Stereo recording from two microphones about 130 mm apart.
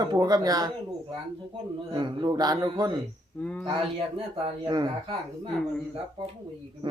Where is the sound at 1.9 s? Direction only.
35° right (ahead or behind).